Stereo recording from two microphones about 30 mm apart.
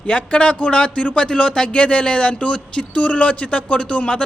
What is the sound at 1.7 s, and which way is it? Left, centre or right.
Speech, left.